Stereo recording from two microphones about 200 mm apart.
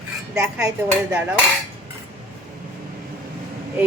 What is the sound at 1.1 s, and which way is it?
Speech, 5° right (ahead or behind).